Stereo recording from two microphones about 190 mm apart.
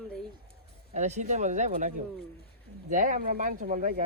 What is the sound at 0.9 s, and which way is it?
Speech, 35° right (ahead or behind).